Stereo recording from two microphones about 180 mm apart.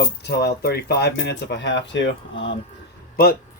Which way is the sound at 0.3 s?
65° left (ahead or behind).